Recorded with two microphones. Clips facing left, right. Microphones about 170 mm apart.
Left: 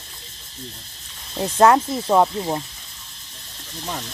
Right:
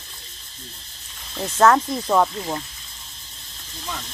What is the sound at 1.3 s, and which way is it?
Speech, 15° left (ahead or behind).